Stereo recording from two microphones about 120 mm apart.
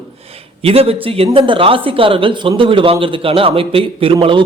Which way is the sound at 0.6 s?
55° right (ahead or behind).